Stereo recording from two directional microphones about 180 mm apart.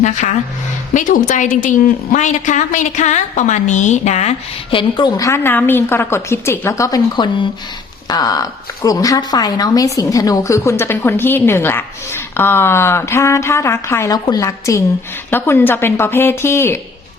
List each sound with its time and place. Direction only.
0.0 s a woman's voice: 40° left (ahead or behind); by 16.8 s 15° left (ahead or behind)